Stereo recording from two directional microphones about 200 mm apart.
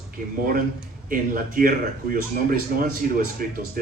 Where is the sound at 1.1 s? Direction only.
45° right (ahead or behind).